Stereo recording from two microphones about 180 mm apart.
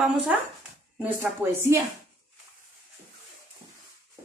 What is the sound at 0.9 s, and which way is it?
Speech, 10° right (ahead or behind).